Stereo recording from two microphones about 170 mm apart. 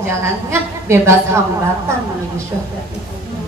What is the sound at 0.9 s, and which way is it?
Speech, 15° right (ahead or behind).